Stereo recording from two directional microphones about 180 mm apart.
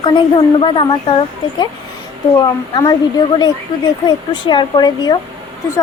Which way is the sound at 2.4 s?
20° left (ahead or behind).